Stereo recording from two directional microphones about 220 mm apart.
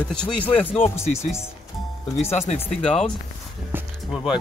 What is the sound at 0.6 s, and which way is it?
Speech, 10° left (ahead or behind).